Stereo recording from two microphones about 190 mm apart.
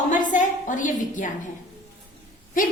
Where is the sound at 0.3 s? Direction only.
40° left (ahead or behind).